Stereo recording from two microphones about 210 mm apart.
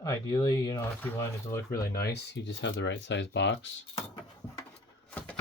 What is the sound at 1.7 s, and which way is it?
Speech, 50° left (ahead or behind).